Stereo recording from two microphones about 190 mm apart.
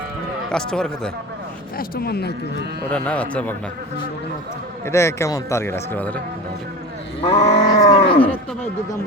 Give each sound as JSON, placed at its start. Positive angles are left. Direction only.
{"t": 0.5, "sound": "speech", "side_deg": 5}
{"t": 1.8, "sound": "speech", "side_deg": 55}
{"t": 2.9, "sound": "speech", "side_deg": 5}
{"t": 4.9, "sound": "speech", "side_deg": 15}
{"t": 7.2, "sound": "livestock", "side_deg": 30}